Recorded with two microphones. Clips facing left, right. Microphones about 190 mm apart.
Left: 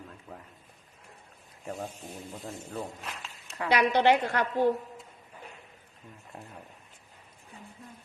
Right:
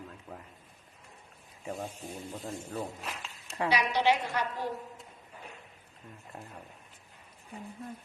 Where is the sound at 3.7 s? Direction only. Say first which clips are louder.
Left 5 dB; 60° left (ahead or behind).